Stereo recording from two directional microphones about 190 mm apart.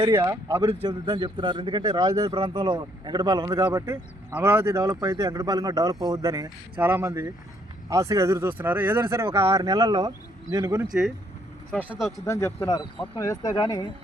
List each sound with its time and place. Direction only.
0.0 s a man's voice: 20° right (ahead or behind)
12.2 s speech: 15° left (ahead or behind)